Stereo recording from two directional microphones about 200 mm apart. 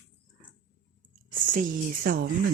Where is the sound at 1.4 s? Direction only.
40° right (ahead or behind).